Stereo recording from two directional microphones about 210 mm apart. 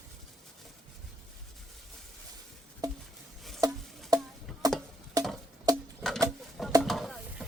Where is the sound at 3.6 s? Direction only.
15° right (ahead or behind).